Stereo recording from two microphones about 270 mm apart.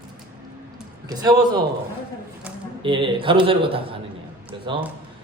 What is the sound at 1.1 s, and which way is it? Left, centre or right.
Speech, centre.